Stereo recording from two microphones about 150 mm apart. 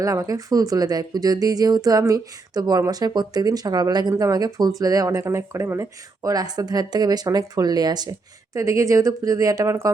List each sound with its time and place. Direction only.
0.0 s speech: 20° right (ahead or behind)